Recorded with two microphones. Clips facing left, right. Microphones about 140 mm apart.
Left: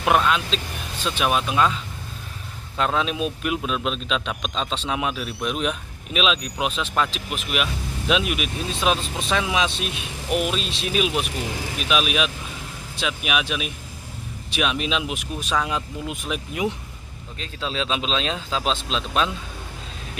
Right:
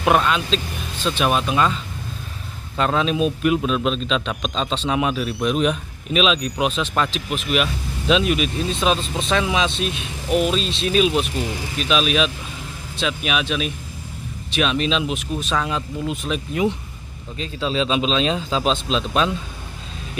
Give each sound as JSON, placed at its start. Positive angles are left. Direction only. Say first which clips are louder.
{"t": 0.0, "sound": "a man's voice", "louder": "right 2 dB", "side_deg": 0}
{"t": 2.8, "sound": "a man's voice", "louder": "right 4 dB", "side_deg": 0}